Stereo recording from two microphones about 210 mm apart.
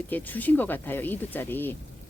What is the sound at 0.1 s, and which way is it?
Speech, 10° left (ahead or behind).